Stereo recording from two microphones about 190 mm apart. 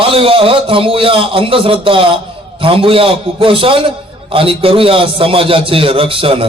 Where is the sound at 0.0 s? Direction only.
30° right (ahead or behind).